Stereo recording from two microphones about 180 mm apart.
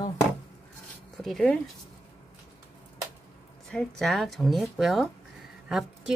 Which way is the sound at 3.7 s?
5° left (ahead or behind).